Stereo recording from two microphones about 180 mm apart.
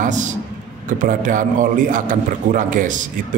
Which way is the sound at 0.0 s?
45° right (ahead or behind).